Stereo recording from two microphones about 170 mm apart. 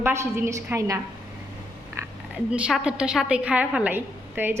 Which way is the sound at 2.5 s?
5° right (ahead or behind).